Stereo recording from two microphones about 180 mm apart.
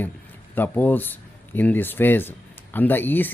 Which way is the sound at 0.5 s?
10° left (ahead or behind).